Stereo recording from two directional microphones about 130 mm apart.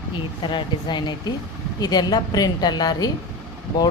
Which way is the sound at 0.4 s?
35° left (ahead or behind).